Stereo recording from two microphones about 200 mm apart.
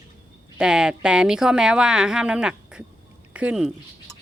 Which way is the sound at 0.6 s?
5° right (ahead or behind).